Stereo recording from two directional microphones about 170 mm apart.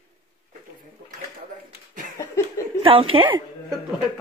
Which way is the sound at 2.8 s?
30° right (ahead or behind).